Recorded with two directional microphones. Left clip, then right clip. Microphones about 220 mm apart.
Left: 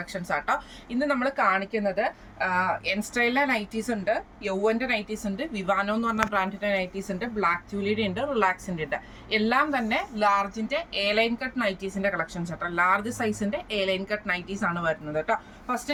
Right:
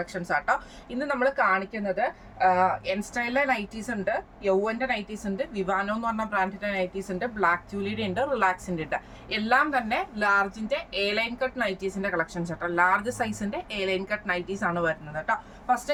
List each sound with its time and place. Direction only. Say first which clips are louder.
0.0 s a woman's voice: right 2 dB; 15° right (ahead or behind)